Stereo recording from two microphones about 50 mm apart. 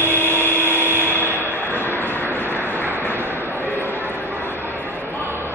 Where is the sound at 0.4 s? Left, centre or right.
Left.